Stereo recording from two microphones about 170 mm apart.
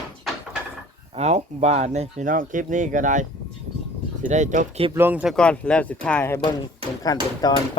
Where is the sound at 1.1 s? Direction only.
40° right (ahead or behind).